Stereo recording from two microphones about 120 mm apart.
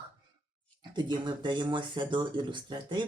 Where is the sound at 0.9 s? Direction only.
40° right (ahead or behind).